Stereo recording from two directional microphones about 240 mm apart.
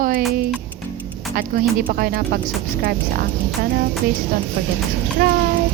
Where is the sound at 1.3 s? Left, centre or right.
Right.